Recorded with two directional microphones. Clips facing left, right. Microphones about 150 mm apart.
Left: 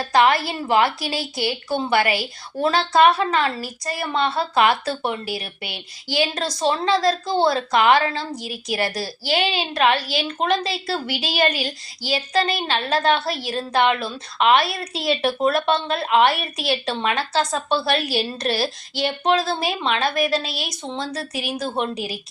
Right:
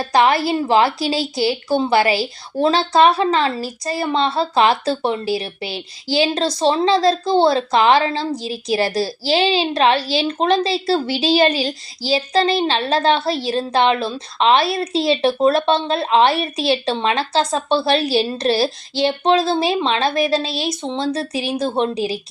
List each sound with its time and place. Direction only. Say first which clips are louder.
0.0 s a woman's voice: right 2 dB; 25° right (ahead or behind)